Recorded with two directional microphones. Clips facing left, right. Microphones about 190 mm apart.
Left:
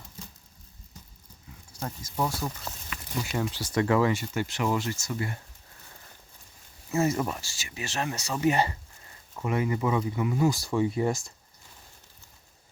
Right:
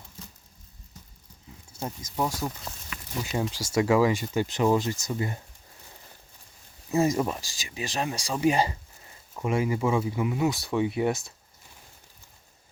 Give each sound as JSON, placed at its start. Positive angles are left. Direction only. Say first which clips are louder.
{"t": 1.8, "sound": "speech", "louder": "right 1 dB", "side_deg": -15}
{"t": 3.3, "sound": "speech", "louder": "right 1 dB", "side_deg": -25}
{"t": 3.8, "sound": "speech", "louder": "right 2 dB", "side_deg": -10}
{"t": 6.9, "sound": "speech", "louder": "right 2 dB", "side_deg": -15}